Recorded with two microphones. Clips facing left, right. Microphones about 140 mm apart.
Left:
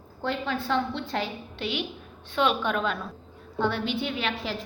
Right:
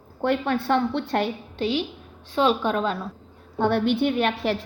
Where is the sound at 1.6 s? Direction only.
35° right (ahead or behind).